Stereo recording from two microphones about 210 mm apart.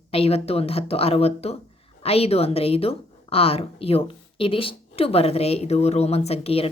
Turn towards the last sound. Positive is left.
turn(degrees=30)  # may be behind; listen again after turning